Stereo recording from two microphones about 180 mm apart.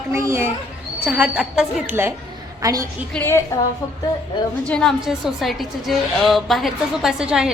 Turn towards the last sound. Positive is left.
turn(degrees=-5)  # may be behind; listen again after turning